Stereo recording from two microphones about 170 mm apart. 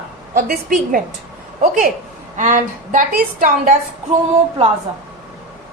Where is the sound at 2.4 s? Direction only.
50° right (ahead or behind).